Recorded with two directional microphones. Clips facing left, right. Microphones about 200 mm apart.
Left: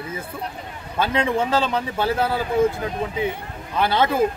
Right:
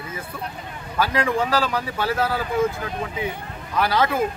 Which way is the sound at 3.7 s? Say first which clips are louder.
Left 1 dB; 25° left (ahead or behind).